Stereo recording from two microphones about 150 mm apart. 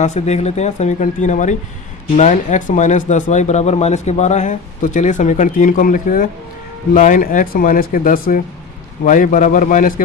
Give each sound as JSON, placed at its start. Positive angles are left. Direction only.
{"t": 0.0, "sound": "speech", "side_deg": 50}
{"t": 9.0, "sound": "speech", "side_deg": 55}